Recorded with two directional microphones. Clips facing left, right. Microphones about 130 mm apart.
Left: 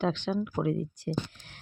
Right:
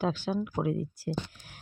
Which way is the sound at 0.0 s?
10° right (ahead or behind).